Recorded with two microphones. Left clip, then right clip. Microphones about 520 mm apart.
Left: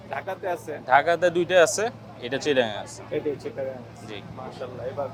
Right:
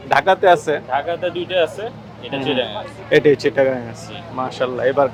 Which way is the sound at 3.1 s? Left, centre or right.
Right.